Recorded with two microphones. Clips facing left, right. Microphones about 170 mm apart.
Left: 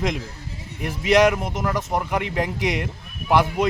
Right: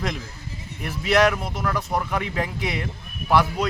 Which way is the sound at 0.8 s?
15° left (ahead or behind).